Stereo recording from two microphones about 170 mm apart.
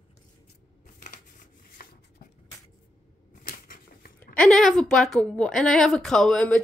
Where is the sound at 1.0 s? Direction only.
50° left (ahead or behind).